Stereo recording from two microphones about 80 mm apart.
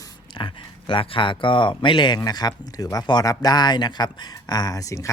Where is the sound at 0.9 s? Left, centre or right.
Left.